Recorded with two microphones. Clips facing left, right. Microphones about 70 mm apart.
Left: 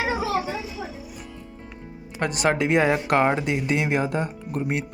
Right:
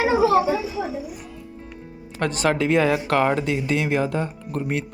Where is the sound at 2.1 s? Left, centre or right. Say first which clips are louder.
Right 1 dB; centre.